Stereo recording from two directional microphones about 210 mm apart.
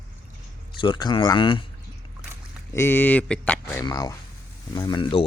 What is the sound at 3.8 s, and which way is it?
Speech, 15° left (ahead or behind).